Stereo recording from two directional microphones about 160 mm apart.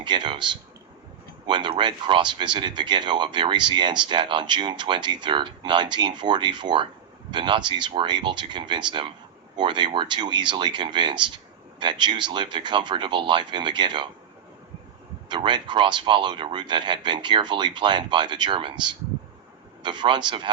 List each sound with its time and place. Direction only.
0.0 s speech: 30° right (ahead or behind)
15.3 s speech: 30° right (ahead or behind)